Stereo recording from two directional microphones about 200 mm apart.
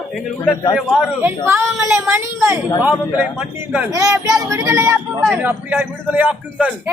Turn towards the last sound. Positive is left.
turn(degrees=-5)  # may be behind; listen again after turning